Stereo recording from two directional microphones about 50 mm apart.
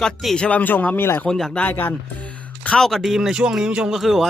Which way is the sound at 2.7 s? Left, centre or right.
Centre.